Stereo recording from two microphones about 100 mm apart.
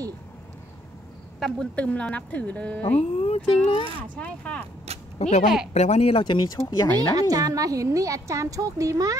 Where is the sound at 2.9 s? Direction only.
90° left.